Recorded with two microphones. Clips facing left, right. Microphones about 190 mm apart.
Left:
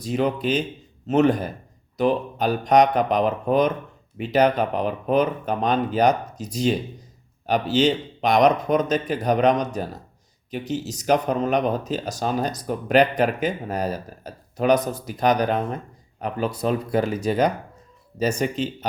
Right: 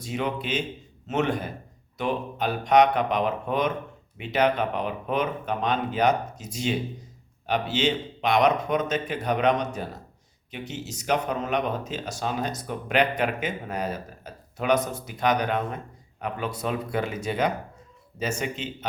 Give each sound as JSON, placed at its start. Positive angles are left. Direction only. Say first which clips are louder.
{"t": 0.0, "sound": "speech", "louder": "left 6 dB", "side_deg": 35}